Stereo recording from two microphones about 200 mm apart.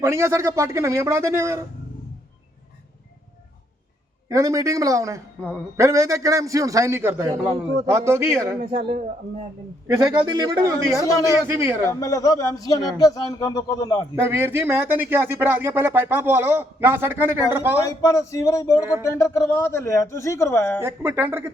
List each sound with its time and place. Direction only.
0.0 s speech: 15° right (ahead or behind)
4.3 s speech: 15° right (ahead or behind)
9.8 s speech: 20° right (ahead or behind)
11.9 s a man's voice: 15° left (ahead or behind)
14.2 s speech: 10° right (ahead or behind)
17.8 s a man's voice: 15° left (ahead or behind)
20.8 s speech: 10° right (ahead or behind)